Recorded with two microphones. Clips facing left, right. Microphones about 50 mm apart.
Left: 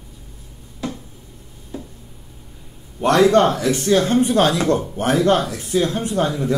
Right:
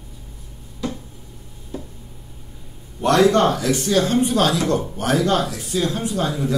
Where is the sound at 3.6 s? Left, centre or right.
Left.